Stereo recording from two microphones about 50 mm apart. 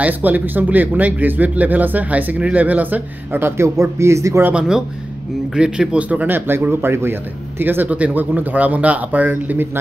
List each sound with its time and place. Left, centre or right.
0.0 s speech: right
3.4 s speech: right
4.6 s speech: centre
6.0 s speech: right
6.3 s speech: right
7.9 s speech: right